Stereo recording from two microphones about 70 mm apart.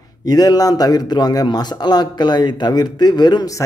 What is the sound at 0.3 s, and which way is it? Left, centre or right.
A man's voice, left.